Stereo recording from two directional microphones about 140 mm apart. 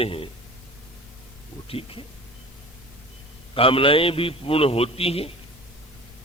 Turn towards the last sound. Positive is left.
turn(degrees=45)  # may be behind; listen again after turning